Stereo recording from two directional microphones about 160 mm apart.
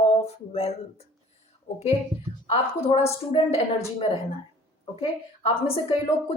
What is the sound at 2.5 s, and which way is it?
A woman's voice, 40° left (ahead or behind).